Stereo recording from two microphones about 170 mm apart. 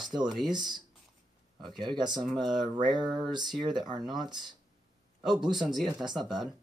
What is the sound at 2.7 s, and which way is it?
Speech, 25° right (ahead or behind).